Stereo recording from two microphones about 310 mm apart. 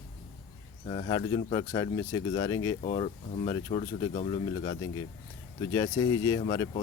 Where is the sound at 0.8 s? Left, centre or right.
Centre.